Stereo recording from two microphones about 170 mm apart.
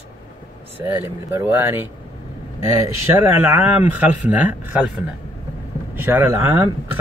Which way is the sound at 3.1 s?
15° right (ahead or behind).